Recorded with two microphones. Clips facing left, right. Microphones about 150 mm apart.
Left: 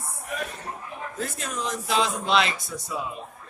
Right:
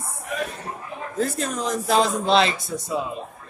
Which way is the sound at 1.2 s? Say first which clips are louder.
Right 6 dB; 35° right (ahead or behind).